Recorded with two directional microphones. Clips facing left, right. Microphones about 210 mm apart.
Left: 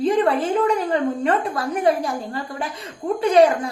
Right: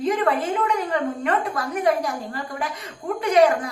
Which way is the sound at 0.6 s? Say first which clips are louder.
Left 4 dB; 30° left (ahead or behind).